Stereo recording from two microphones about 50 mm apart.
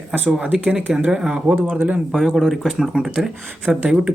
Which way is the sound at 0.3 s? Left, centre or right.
Right.